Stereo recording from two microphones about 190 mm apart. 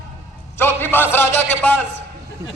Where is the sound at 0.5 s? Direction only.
10° left (ahead or behind).